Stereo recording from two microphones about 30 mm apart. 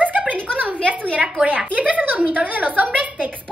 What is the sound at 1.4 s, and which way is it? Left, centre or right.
A woman's voice, right.